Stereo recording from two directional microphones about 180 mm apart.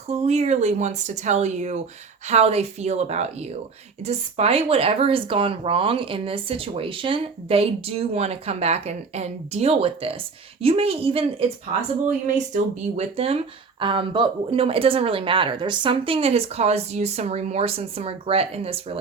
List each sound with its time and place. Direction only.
0.1 s speech: 35° right (ahead or behind)
12.5 s speech: 35° right (ahead or behind)